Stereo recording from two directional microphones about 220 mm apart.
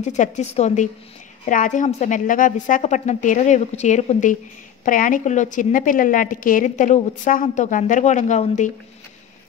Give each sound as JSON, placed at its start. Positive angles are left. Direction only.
{"t": 0.0, "sound": "a woman's voice", "side_deg": 30}